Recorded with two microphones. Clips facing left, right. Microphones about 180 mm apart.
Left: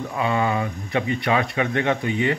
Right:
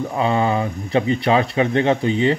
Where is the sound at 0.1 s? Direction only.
30° right (ahead or behind).